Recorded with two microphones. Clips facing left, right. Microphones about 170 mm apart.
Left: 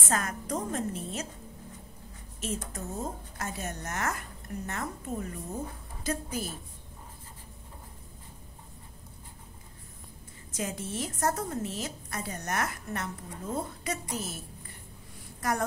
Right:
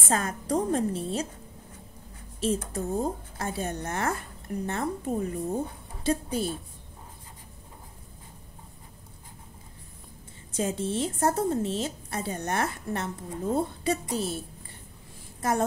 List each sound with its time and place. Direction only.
0.1 s speech: 30° right (ahead or behind)
2.4 s a woman's voice: 30° right (ahead or behind)
10.5 s a woman's voice: 30° right (ahead or behind)
15.4 s a woman's voice: 25° right (ahead or behind)